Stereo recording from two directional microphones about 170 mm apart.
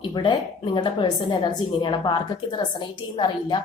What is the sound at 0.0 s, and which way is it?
A woman's voice, 25° left (ahead or behind).